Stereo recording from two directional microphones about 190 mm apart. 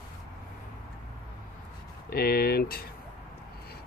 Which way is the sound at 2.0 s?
55° left (ahead or behind).